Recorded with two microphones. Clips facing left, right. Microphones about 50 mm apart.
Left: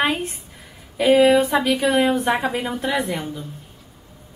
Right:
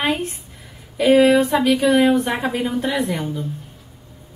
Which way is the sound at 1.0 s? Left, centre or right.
Centre.